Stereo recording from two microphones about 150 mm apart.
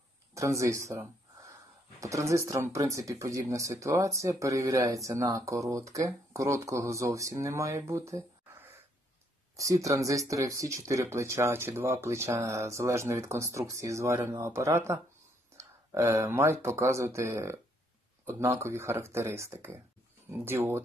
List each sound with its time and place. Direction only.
0.3 s speech: 20° right (ahead or behind)
15.5 s a sound: 20° right (ahead or behind)
16.6 s speech: 15° right (ahead or behind)